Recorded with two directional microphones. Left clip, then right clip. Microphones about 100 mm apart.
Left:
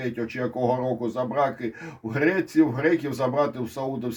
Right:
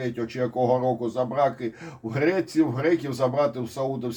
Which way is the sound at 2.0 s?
15° left (ahead or behind).